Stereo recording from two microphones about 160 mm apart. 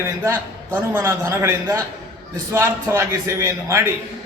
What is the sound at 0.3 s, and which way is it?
A man's voice, 15° right (ahead or behind).